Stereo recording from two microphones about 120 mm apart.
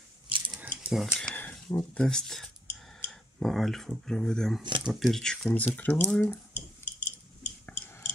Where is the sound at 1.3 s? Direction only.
15° left (ahead or behind).